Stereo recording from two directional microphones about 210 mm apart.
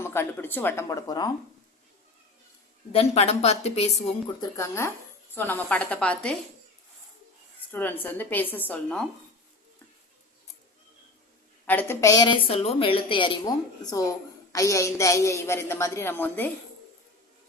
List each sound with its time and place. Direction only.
0.0 s a woman's voice: 10° left (ahead or behind)
2.9 s a woman's voice: 30° left (ahead or behind)
4.4 s a woman's voice: 15° left (ahead or behind)
7.7 s a woman's voice: 10° left (ahead or behind)
11.6 s a woman's voice: 10° left (ahead or behind)